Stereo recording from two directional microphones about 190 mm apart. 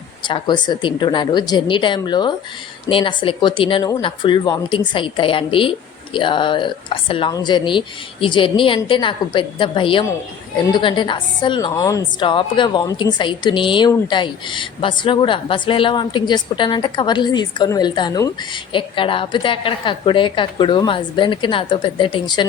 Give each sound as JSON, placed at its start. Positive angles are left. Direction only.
{"t": 0.3, "sound": "a woman's voice", "side_deg": 25}